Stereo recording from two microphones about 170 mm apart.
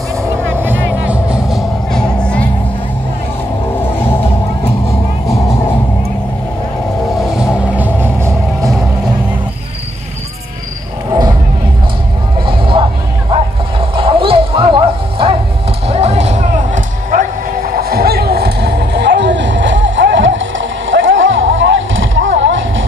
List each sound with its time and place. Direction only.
1.0 s music: 5° right (ahead or behind)
3.8 s music: 15° left (ahead or behind)
7.2 s music: centre (ahead or behind)
12.4 s music: 30° right (ahead or behind)
13.3 s a sound: 30° right (ahead or behind)
15.9 s music: 40° right (ahead or behind); by 22.7 s 90° right